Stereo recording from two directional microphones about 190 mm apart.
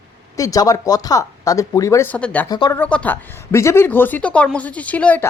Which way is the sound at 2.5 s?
20° left (ahead or behind).